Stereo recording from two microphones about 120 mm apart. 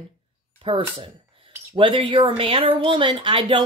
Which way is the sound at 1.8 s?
45° right (ahead or behind).